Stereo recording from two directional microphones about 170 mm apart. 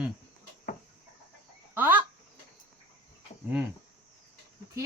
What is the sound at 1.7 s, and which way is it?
Fowl, 10° right (ahead or behind).